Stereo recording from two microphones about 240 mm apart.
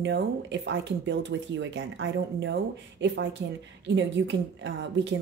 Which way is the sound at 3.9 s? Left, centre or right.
Right.